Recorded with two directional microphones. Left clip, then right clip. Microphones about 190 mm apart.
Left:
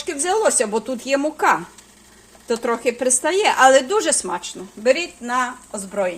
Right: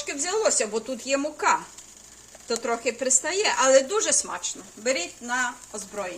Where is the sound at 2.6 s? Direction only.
40° left (ahead or behind).